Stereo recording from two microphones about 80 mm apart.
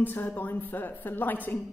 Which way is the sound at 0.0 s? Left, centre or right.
Left.